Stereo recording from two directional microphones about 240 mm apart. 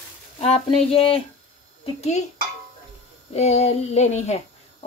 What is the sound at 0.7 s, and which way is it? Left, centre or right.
Speech, left.